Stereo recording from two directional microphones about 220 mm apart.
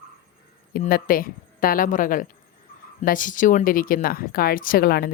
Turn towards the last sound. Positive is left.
turn(degrees=45)  # may be behind; listen again after turning